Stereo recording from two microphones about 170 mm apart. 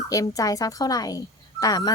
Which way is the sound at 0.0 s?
20° left (ahead or behind).